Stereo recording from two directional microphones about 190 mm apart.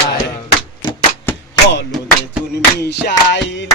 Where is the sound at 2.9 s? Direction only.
70° left (ahead or behind).